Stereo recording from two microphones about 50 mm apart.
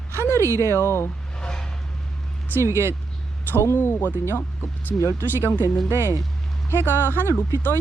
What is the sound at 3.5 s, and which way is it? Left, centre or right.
Speech, left.